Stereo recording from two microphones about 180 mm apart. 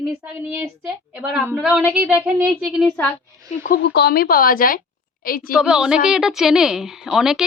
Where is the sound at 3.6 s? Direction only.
60° left (ahead or behind).